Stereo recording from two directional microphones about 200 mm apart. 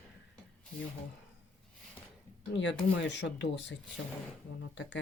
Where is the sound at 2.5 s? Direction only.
65° left (ahead or behind).